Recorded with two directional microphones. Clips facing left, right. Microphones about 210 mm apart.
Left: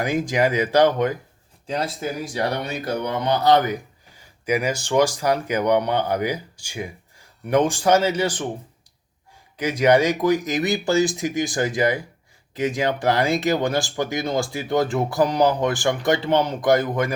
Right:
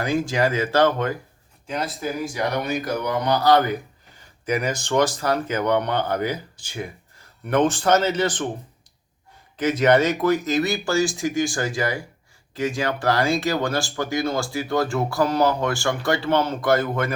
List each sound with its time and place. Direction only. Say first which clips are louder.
0.0 s speech: left 1 dB; 15° left (ahead or behind)
1.6 s speech: left 1 dB; 30° left (ahead or behind); by 8.4 s 10° left (ahead or behind)
9.6 s speech: even; 10° left (ahead or behind)